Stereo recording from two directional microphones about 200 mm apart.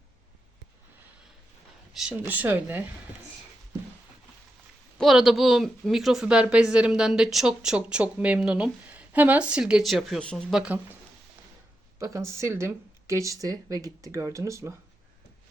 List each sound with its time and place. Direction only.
1.9 s speech: 5° right (ahead or behind)
4.9 s speech: centre (ahead or behind)
11.9 s speech: 15° right (ahead or behind)